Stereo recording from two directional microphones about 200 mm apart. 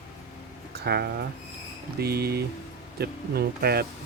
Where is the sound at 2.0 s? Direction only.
50° right (ahead or behind).